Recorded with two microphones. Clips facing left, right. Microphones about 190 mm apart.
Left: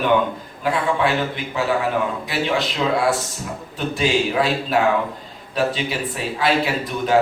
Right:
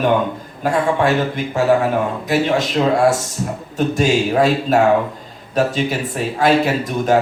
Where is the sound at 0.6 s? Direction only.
45° right (ahead or behind).